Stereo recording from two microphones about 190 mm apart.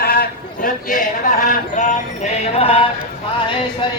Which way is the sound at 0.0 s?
50° left (ahead or behind).